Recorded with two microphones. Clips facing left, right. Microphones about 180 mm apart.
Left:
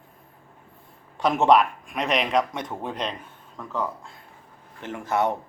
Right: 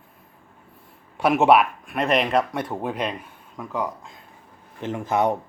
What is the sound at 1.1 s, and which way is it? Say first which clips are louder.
Speech: right 2 dB; 10° right (ahead or behind).